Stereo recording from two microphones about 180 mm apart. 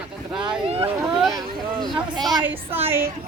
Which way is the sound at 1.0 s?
Centre (ahead or behind).